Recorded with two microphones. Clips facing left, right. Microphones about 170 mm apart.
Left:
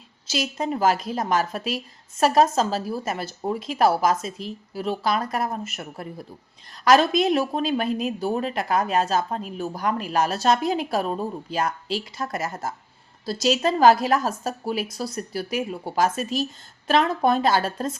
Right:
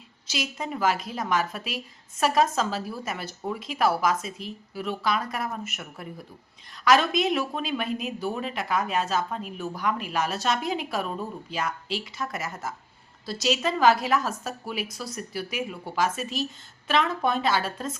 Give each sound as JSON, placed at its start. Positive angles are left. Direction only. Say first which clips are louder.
{"t": 0.3, "sound": "speech", "louder": "left 6 dB", "side_deg": 35}